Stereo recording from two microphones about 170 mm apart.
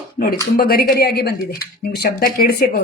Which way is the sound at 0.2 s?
65° left (ahead or behind).